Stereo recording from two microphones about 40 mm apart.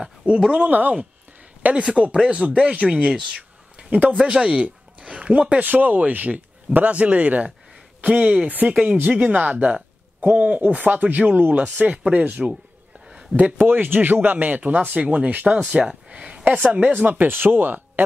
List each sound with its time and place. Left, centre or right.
0.2 s speech: right
0.7 s speech: right
1.7 s speech: right
3.9 s speech: right
5.0 s a sound: right
5.6 s speech: right
13.6 s speech: right
15.6 s speech: right
16.4 s speech: right